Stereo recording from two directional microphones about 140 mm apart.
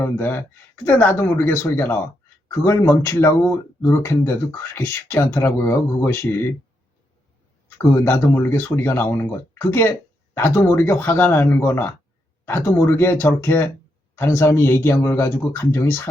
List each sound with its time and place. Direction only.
0.0 s speech: 15° left (ahead or behind)
8.0 s speech: 15° left (ahead or behind)